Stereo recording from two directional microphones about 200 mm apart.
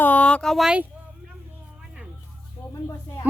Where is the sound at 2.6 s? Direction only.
30° left (ahead or behind).